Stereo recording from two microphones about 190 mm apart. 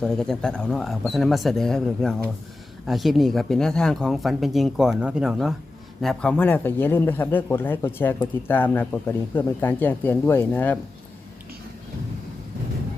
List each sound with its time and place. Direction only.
0.0 s speech: centre (ahead or behind)